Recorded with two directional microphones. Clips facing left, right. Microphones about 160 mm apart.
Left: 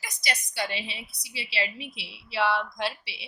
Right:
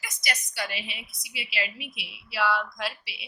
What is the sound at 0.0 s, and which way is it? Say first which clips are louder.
A woman's voice: left 1 dB; 30° left (ahead or behind).